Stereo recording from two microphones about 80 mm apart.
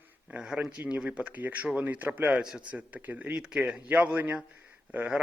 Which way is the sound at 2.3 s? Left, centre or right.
Centre.